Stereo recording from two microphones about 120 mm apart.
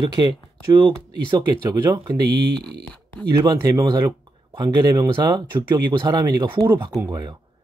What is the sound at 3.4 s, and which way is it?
Speech, 30° right (ahead or behind).